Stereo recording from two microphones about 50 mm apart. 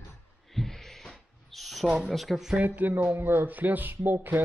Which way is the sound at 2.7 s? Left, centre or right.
Right.